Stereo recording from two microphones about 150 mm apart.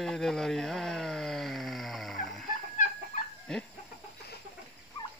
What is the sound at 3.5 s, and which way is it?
Chicken, 5° left (ahead or behind).